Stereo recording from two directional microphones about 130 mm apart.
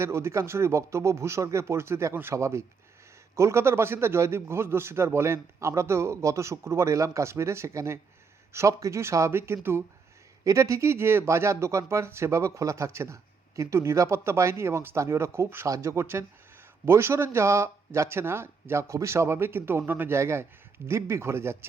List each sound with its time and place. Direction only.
0.0 s speech: 20° right (ahead or behind)